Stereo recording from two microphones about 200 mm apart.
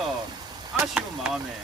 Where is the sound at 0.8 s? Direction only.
5° right (ahead or behind).